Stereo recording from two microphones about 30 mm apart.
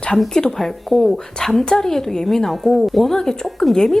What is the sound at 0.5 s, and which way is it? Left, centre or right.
Speech, centre.